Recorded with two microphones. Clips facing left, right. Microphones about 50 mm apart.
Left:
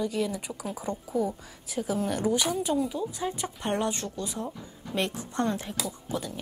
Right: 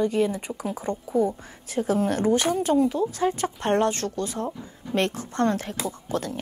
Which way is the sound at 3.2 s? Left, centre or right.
Right.